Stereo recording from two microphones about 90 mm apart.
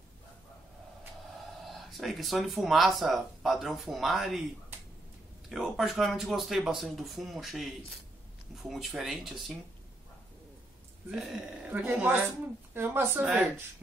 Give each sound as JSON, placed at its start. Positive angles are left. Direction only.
{"t": 1.6, "sound": "speech", "side_deg": 0}
{"t": 5.5, "sound": "speech", "side_deg": 0}
{"t": 11.1, "sound": "speech", "side_deg": -5}
{"t": 11.7, "sound": "speech", "side_deg": -20}
{"t": 13.2, "sound": "speech", "side_deg": -10}